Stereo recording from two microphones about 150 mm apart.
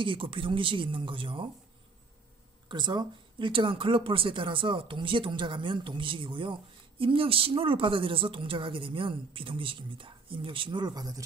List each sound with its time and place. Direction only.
0.0 s speech: 35° right (ahead or behind)
2.7 s speech: 30° right (ahead or behind)